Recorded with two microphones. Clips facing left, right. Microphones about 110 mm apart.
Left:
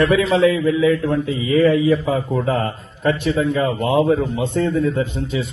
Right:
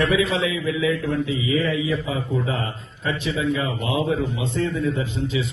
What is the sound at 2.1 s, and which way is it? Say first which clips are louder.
A man's voice: left 6 dB; 45° left (ahead or behind).